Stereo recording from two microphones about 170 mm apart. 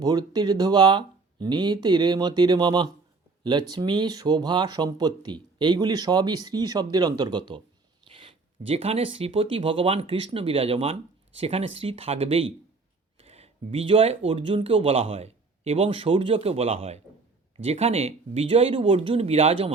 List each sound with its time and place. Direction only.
0.0 s speech: 25° right (ahead or behind)
8.0 s a sound: 30° right (ahead or behind)
9.1 s speech: 35° right (ahead or behind)